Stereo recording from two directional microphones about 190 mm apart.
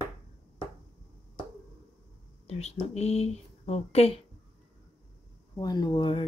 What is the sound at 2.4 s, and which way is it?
Speech, 35° left (ahead or behind).